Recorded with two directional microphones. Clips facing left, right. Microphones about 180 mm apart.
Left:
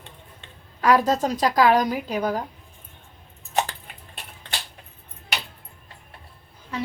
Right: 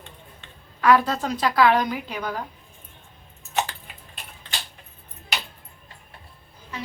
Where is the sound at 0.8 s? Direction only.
40° left (ahead or behind).